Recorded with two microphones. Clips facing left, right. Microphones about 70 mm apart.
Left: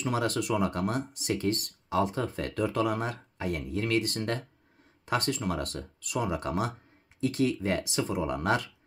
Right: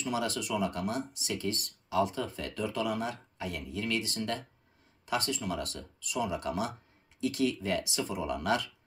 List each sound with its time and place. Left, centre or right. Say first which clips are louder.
0.0 s speech: left 4 dB; left